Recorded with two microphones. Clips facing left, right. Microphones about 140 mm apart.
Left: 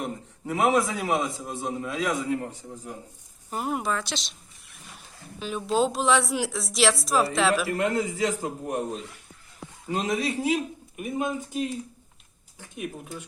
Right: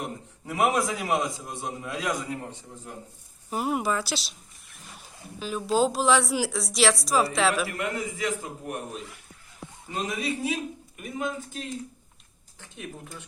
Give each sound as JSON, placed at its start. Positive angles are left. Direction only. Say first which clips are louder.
{"t": 0.0, "sound": "a man's voice", "louder": "left 3 dB", "side_deg": 0}
{"t": 7.7, "sound": "a man's voice", "louder": "left 6 dB", "side_deg": 30}
{"t": 9.9, "sound": "a man's voice", "louder": "left 4 dB", "side_deg": 30}
{"t": 10.9, "sound": "speech", "louder": "left 4 dB", "side_deg": 20}